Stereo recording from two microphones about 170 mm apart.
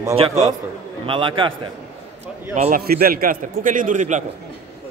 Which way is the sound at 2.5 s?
45° right (ahead or behind).